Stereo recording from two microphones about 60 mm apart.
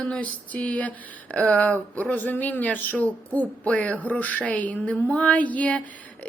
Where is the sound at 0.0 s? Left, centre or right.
Left.